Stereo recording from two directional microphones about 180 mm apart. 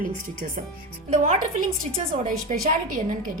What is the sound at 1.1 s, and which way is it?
A woman's voice, 40° right (ahead or behind).